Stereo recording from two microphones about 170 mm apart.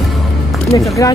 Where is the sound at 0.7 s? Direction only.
20° left (ahead or behind).